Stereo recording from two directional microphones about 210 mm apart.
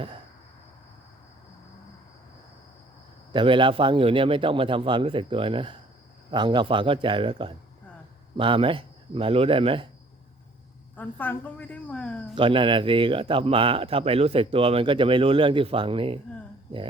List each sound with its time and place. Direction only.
3.3 s a man's voice: 25° right (ahead or behind)
10.9 s a woman's voice: 10° left (ahead or behind)
12.3 s a man's voice: 25° right (ahead or behind)